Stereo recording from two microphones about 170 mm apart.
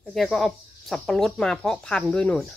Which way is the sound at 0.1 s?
Centre (ahead or behind).